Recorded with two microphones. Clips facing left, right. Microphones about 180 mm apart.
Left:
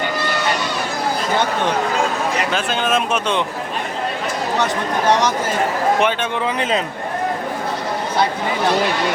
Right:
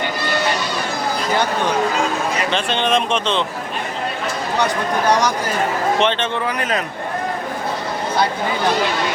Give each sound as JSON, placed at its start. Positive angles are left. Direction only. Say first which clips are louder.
{"t": 2.5, "sound": "speech", "louder": "right 1 dB", "side_deg": 5}
{"t": 4.6, "sound": "speech", "louder": "right 1 dB", "side_deg": 20}
{"t": 6.0, "sound": "speech", "louder": "even", "side_deg": 10}
{"t": 6.6, "sound": "speech", "louder": "left 4 dB", "side_deg": 25}